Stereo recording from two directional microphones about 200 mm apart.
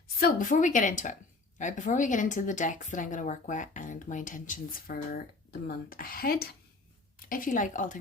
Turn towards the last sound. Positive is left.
turn(degrees=40)  # may be behind; listen again after turning